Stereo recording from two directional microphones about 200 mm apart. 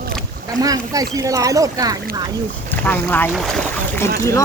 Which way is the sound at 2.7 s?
10° left (ahead or behind).